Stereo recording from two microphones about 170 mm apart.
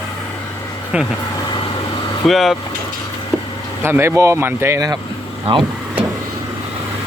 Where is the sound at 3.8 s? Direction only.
15° right (ahead or behind).